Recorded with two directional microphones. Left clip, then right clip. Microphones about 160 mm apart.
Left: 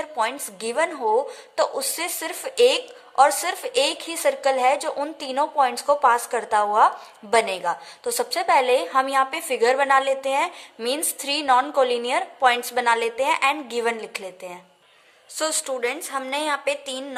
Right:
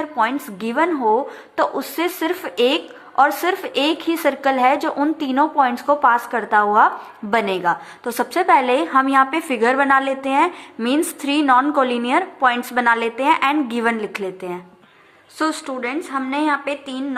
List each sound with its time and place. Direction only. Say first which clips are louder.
0.0 s speech: right 5 dB; 35° left (ahead or behind)
15.4 s a woman's voice: right 2 dB; 55° left (ahead or behind)